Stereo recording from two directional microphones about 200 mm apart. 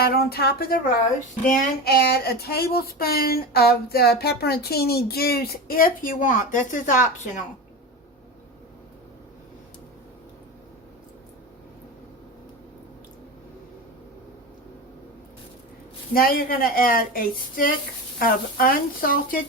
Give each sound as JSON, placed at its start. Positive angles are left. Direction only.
{"t": 0.0, "sound": "speech", "side_deg": 50}
{"t": 16.1, "sound": "speech", "side_deg": 45}